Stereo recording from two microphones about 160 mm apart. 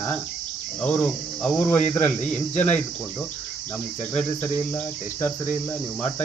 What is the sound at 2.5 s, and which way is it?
Speech, 45° left (ahead or behind).